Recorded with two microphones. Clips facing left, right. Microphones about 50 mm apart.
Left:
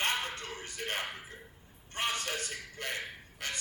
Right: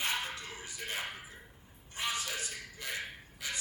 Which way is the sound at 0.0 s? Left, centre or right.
Left.